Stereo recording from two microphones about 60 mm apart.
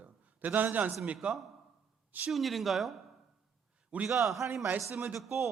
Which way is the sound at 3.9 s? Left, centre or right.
Right.